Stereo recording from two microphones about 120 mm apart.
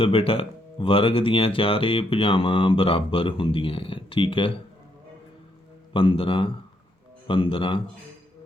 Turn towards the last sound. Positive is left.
turn(degrees=45)  # may be behind; listen again after turning